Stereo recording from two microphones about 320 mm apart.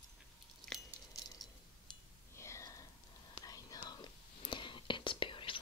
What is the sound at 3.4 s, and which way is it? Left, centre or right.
Whispering, centre.